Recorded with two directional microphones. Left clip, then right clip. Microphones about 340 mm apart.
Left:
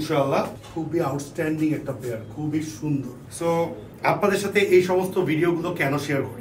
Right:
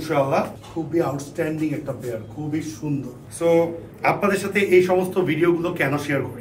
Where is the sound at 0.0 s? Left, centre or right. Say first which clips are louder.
Right 2 dB; centre.